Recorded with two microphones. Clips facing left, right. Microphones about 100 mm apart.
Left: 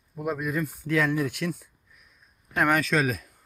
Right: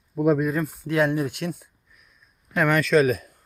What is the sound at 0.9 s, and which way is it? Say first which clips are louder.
Speech: right 3 dB; 50° right (ahead or behind).